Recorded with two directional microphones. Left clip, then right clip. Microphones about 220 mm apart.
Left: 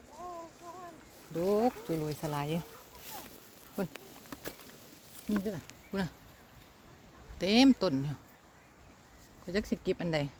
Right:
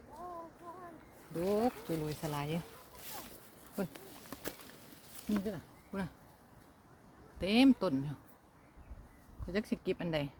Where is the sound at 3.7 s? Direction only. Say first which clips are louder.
Left 3 dB; 35° left (ahead or behind).